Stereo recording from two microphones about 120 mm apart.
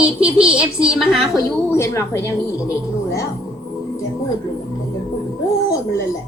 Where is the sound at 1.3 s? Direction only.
25° left (ahead or behind).